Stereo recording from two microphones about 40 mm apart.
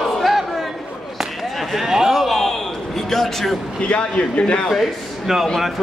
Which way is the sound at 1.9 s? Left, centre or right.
Centre.